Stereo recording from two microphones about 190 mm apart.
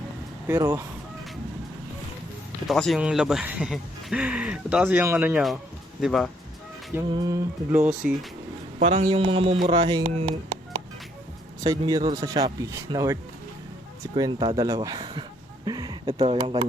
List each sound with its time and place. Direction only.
0.4 s speech: 15° right (ahead or behind)
2.6 s speech: centre (ahead or behind)
7.1 s speech: 20° right (ahead or behind)
7.7 s speech: 5° right (ahead or behind)
8.8 s a man's voice: 35° right (ahead or behind)
11.6 s speech: 20° right (ahead or behind)
14.2 s speech: 20° right (ahead or behind)